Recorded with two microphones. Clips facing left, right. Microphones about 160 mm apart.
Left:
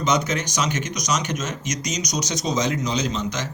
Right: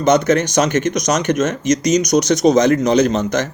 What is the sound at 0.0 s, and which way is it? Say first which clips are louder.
A man's voice: right 9 dB; 55° right (ahead or behind).